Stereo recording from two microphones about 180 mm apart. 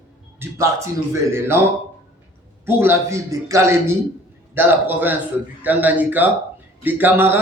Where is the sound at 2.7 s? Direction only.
15° right (ahead or behind).